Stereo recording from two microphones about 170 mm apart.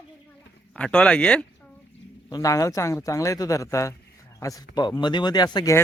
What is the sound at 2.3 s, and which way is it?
Speech, 20° left (ahead or behind).